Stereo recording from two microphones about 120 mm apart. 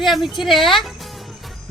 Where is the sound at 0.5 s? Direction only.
Centre (ahead or behind).